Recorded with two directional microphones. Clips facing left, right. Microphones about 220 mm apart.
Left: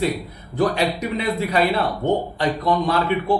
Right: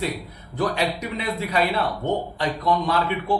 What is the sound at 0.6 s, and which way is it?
A man's voice, 40° left (ahead or behind).